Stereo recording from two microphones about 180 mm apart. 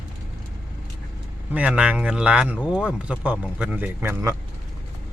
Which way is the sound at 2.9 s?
5° right (ahead or behind).